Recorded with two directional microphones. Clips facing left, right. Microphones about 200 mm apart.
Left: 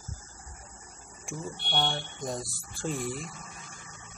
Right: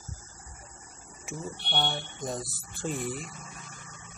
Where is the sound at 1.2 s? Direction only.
Centre (ahead or behind).